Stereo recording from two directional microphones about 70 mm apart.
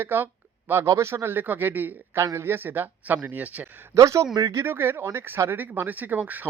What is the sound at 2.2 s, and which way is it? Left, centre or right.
Speech, right.